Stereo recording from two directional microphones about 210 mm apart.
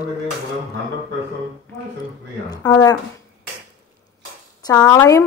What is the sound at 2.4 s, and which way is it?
Speech, 20° left (ahead or behind).